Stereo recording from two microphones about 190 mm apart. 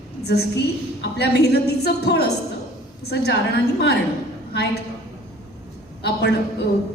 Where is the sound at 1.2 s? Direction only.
60° left (ahead or behind).